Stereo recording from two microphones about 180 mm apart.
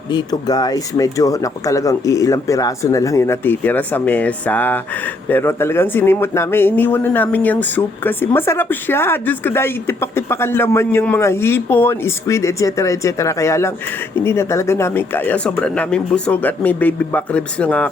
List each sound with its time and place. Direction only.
0.1 s speech: 25° left (ahead or behind); by 17.8 s 5° left (ahead or behind)